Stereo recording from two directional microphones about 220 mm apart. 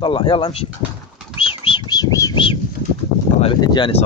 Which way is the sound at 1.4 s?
25° left (ahead or behind).